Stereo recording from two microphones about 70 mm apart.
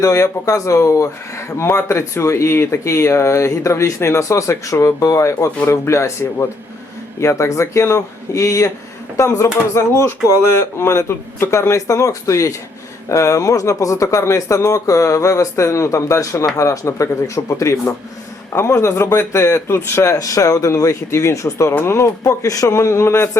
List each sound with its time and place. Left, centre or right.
0.0 s a man's voice: left
22.2 s speech: left
22.6 s a man's voice: left